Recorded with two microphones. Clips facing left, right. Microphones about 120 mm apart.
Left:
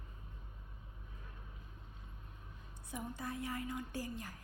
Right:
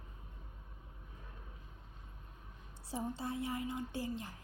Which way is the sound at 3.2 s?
25° right (ahead or behind).